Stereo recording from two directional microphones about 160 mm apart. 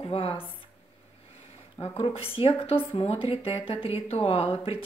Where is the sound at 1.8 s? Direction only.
35° left (ahead or behind).